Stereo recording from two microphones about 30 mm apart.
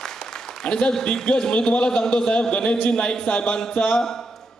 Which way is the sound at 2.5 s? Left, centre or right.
Left.